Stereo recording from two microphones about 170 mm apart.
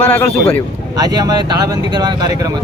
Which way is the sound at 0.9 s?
20° right (ahead or behind).